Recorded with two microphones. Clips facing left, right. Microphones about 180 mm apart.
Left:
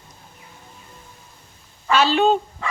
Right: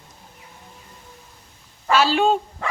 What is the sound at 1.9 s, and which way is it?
Speech, 5° right (ahead or behind).